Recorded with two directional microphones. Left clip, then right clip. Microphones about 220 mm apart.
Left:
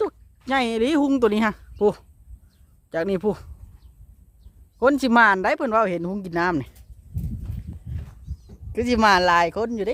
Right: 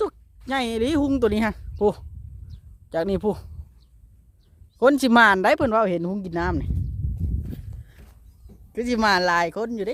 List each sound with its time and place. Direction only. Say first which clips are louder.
0.4 s speech: left 3 dB; 5° left (ahead or behind)
4.8 s speech: right 1 dB; 15° right (ahead or behind)
8.7 s speech: left 3 dB; 5° left (ahead or behind)